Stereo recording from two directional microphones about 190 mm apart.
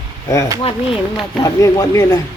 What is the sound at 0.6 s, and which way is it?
Speech, 30° left (ahead or behind).